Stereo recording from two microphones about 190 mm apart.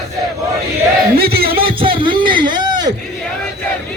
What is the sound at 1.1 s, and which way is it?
Music, 55° right (ahead or behind).